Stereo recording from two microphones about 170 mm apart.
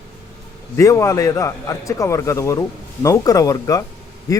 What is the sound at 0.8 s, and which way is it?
Speech, 20° left (ahead or behind).